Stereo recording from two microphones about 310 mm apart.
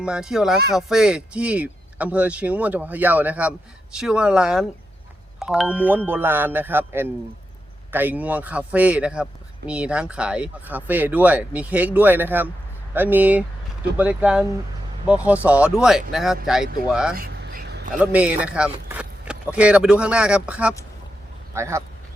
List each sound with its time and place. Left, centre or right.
0.0 s speech: centre
17.2 s vehicle: right
18.0 s speech: centre